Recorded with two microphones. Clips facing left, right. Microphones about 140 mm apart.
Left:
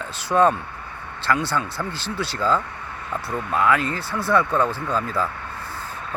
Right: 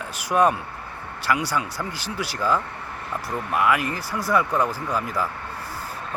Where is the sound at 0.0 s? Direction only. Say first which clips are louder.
Left 2 dB; 10° right (ahead or behind).